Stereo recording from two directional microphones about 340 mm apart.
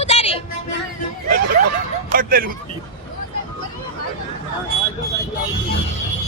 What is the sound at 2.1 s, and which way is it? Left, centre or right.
Speech, right.